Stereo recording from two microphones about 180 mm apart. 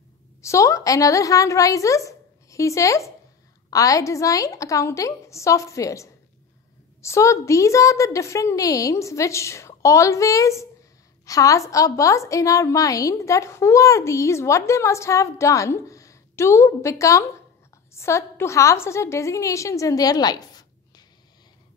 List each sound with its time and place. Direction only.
0.4 s a woman's voice: 15° left (ahead or behind)